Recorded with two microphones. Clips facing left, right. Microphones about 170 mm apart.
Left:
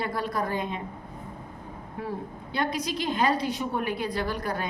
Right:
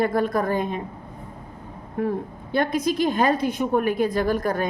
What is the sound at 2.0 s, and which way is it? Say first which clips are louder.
A woman's voice: right 9 dB; 50° right (ahead or behind).